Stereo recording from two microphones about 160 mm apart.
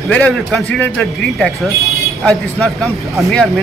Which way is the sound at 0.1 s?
5° left (ahead or behind).